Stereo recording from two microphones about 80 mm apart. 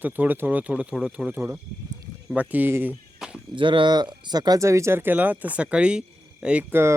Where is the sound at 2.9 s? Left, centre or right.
Centre.